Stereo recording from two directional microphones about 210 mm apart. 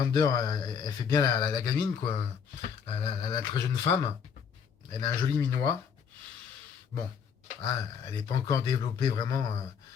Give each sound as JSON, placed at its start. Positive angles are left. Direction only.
{"t": 0.0, "sound": "speech", "side_deg": 20}
{"t": 5.4, "sound": "speech", "side_deg": 15}
{"t": 7.6, "sound": "speech", "side_deg": 15}